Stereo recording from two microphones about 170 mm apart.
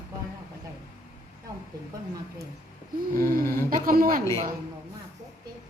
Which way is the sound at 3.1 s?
15° left (ahead or behind).